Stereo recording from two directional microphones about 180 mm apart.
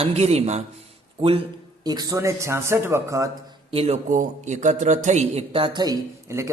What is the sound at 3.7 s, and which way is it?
A man's voice, 35° right (ahead or behind).